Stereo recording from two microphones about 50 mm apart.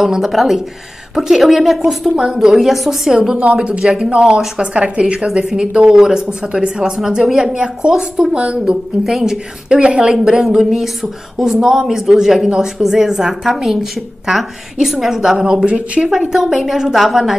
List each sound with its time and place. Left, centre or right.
0.0 s a woman's voice: centre
7.5 s a woman's voice: centre
8.5 s a woman's voice: centre; by 16.1 s right
16.1 s a woman's voice: centre